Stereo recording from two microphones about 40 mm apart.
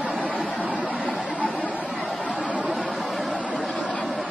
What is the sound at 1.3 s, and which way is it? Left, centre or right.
Chatter, left.